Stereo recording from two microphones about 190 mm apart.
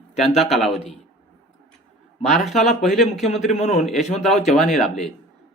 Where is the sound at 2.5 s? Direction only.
Centre (ahead or behind).